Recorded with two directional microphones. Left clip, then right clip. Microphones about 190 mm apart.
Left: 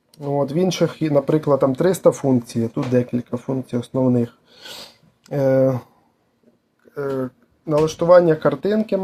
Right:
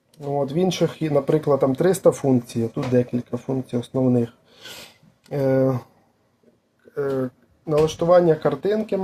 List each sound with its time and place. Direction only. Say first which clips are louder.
0.1 s speech: left 3 dB; 25° left (ahead or behind)
6.9 s a sound: even; 10° left (ahead or behind)
7.7 s speech: left 3 dB; 25° left (ahead or behind)